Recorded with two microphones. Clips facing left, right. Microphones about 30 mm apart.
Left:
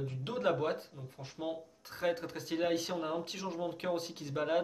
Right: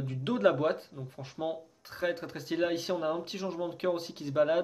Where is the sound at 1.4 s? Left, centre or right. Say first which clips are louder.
Right 4 dB; right.